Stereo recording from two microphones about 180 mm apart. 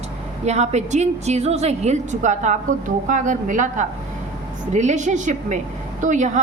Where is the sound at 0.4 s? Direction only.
40° right (ahead or behind).